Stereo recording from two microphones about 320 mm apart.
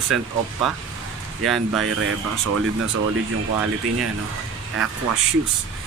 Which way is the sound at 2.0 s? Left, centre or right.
Right.